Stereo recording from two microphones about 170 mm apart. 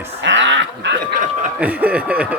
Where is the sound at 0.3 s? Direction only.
90° right.